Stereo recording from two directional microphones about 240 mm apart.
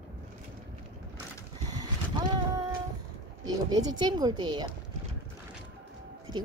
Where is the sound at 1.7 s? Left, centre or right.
Centre.